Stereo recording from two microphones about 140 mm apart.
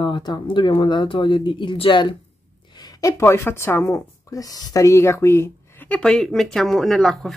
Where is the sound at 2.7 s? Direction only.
25° left (ahead or behind); by 7.3 s centre (ahead or behind).